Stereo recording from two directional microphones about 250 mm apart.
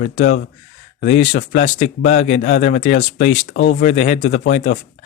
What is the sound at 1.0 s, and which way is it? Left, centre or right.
Speech, left.